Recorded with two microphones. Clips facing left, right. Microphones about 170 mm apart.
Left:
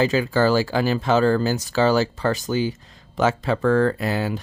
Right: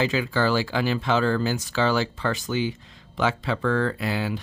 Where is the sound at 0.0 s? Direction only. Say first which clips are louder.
Left 4 dB; 40° left (ahead or behind).